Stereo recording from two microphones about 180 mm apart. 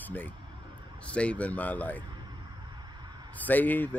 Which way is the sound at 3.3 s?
10° left (ahead or behind).